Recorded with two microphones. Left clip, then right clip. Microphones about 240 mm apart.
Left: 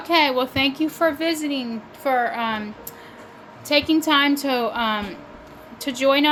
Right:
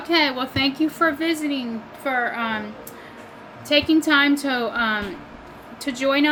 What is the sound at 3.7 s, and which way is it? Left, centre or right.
A woman's voice, left.